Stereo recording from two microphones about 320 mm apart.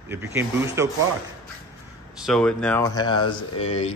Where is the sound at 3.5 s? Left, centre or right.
Left.